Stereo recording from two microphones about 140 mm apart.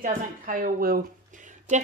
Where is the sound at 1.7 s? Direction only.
60° right (ahead or behind).